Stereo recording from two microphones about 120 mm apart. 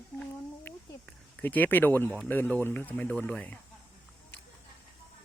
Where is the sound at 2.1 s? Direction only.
15° left (ahead or behind).